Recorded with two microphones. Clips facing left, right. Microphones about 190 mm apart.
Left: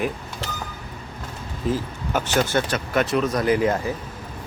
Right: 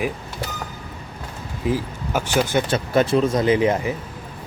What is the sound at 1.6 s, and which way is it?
Speech, 10° right (ahead or behind).